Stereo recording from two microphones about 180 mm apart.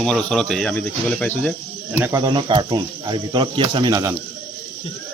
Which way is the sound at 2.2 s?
25° right (ahead or behind).